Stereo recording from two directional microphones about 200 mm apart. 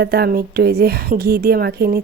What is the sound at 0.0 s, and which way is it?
Speech, 50° right (ahead or behind).